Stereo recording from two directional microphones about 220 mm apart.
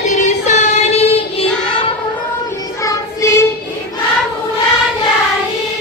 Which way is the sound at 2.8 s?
10° left (ahead or behind).